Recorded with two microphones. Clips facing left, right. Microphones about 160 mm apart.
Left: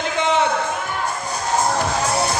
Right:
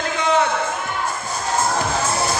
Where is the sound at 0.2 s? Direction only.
20° left (ahead or behind).